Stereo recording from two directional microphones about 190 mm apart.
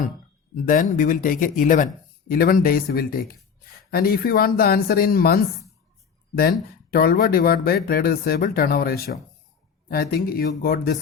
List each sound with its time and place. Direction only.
0.6 s speech: 45° left (ahead or behind)
6.9 s speech: 50° left (ahead or behind)